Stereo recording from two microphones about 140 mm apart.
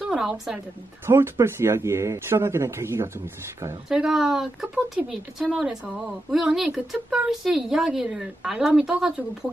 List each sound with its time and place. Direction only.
0.0 s a woman's voice: 5° right (ahead or behind)
1.0 s speech: 15° right (ahead or behind)
3.9 s speech: 5° right (ahead or behind)